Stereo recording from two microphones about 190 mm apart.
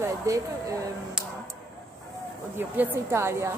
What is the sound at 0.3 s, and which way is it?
Speech, 15° right (ahead or behind).